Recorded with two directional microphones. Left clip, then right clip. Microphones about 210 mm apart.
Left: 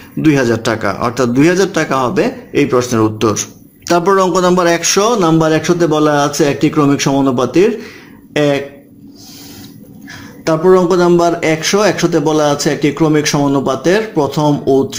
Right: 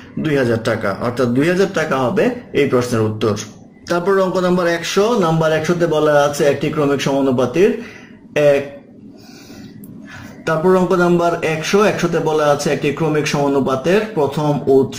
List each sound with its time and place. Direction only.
0.2 s speech: 45° left (ahead or behind)
10.4 s speech: 40° left (ahead or behind)